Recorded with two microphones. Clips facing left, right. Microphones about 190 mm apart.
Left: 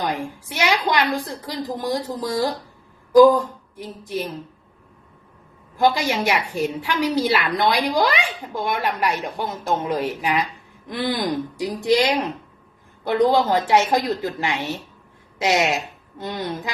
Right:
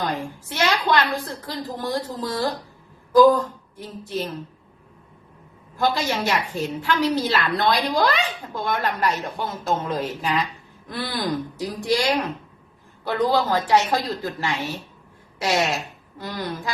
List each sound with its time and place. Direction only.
0.0 s a woman's voice: 15° left (ahead or behind)
5.7 s a woman's voice: 15° left (ahead or behind)